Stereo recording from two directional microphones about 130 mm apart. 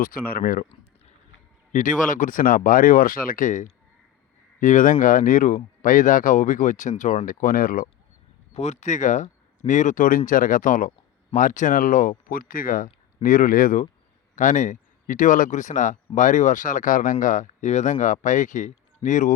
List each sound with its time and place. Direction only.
0.3 s speech: 90° left
1.7 s speech: 75° left (ahead or behind)
8.5 s speech: 60° left (ahead or behind); by 10.9 s 90° left
11.3 s speech: 75° left (ahead or behind)
14.3 s speech: 70° left (ahead or behind)